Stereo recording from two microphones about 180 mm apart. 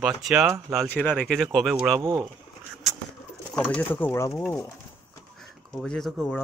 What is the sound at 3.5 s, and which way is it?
Speech, 5° left (ahead or behind).